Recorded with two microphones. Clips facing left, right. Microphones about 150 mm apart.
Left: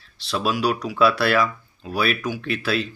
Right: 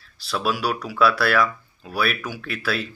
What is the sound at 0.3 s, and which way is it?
Speech, 20° left (ahead or behind).